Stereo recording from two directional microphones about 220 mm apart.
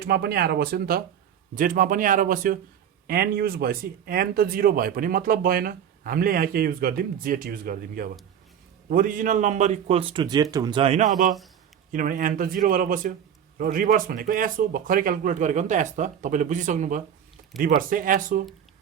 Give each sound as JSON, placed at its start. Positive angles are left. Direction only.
{"t": 0.0, "sound": "speech", "side_deg": -45}